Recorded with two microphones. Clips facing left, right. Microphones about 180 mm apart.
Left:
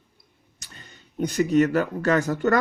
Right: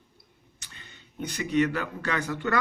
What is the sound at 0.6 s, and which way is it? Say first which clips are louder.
Speech: left 4 dB; 40° left (ahead or behind).